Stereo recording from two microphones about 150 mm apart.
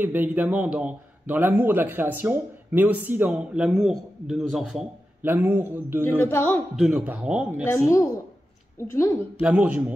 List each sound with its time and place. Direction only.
0.0 s a man's voice: 10° right (ahead or behind)
5.2 s a man's voice: 10° right (ahead or behind)
6.1 s a woman's voice: 10° left (ahead or behind)
6.8 s a man's voice: 5° right (ahead or behind)
7.6 s a woman's voice: 20° left (ahead or behind)
9.4 s a man's voice: 10° right (ahead or behind)